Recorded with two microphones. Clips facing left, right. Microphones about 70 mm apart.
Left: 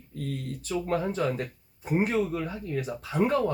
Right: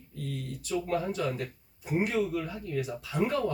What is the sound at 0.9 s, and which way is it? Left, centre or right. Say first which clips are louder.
Speech: left 4 dB; left.